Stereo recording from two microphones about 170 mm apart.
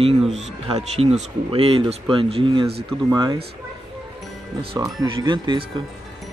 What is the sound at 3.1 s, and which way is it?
Speech, 20° right (ahead or behind).